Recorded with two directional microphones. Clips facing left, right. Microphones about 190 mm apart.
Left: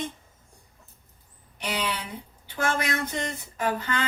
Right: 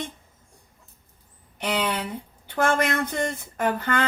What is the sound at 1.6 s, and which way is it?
A woman's voice, 55° right (ahead or behind).